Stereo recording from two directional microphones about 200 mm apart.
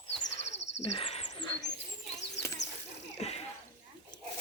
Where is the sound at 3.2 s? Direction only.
30° left (ahead or behind).